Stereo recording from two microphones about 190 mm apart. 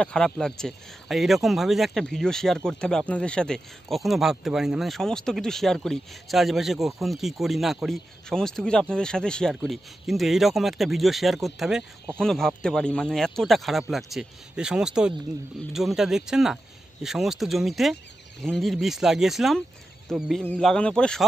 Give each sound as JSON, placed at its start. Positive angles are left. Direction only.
{"t": 0.0, "sound": "speech", "side_deg": 5}